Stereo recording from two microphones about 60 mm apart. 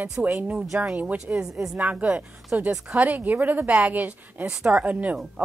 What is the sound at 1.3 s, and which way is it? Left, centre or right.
A woman's voice, right.